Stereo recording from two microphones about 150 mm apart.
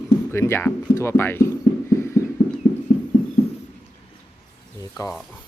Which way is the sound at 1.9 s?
20° left (ahead or behind).